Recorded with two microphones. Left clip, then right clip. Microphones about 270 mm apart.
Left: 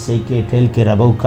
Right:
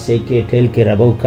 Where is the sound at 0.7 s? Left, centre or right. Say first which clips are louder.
Right 3 dB; centre.